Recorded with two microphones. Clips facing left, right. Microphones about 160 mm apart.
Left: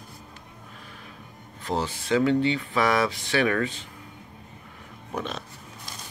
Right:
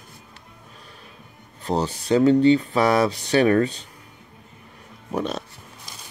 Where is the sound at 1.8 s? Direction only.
40° right (ahead or behind).